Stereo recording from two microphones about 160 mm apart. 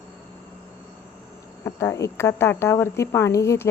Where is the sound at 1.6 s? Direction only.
15° left (ahead or behind).